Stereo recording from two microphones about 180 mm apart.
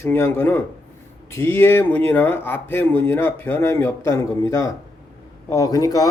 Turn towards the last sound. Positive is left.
turn(degrees=20)  # may be behind; listen again after turning